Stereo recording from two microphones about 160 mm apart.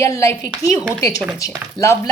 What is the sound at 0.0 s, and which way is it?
Speech, 20° left (ahead or behind).